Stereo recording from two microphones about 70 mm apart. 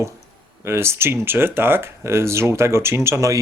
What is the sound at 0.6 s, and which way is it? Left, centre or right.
Speech, right.